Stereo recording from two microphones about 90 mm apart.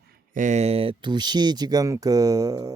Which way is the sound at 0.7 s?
90° right.